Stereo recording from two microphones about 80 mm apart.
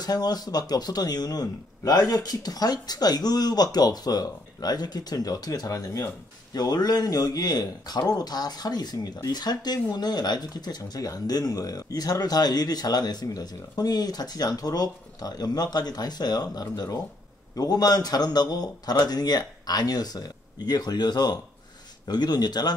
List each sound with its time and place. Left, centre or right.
0.0 s speech: left